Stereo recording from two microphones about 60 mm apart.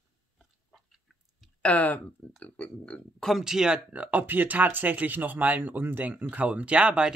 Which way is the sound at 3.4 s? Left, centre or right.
Centre.